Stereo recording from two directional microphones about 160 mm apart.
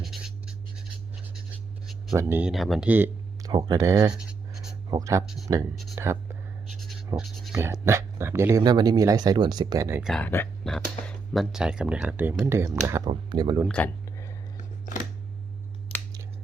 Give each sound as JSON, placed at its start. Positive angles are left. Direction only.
{"t": 0.0, "sound": "a sound", "side_deg": 0}
{"t": 2.1, "sound": "speech", "side_deg": -15}
{"t": 2.5, "sound": "speech", "side_deg": 0}
{"t": 3.4, "sound": "speech", "side_deg": -20}
{"t": 4.1, "sound": "writing", "side_deg": -5}
{"t": 4.9, "sound": "speech", "side_deg": -20}
{"t": 5.2, "sound": "speech", "side_deg": -5}
{"t": 7.2, "sound": "speech", "side_deg": 0}
{"t": 7.5, "sound": "speech", "side_deg": -15}
{"t": 10.0, "sound": "speech", "side_deg": 5}
{"t": 13.1, "sound": "speech", "side_deg": -30}
{"t": 13.7, "sound": "speech", "side_deg": 10}